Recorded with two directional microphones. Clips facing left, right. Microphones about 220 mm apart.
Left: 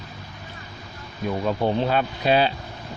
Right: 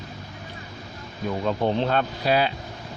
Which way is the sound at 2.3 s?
25° left (ahead or behind).